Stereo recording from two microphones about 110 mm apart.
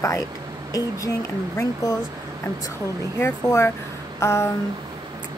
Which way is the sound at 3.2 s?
25° left (ahead or behind).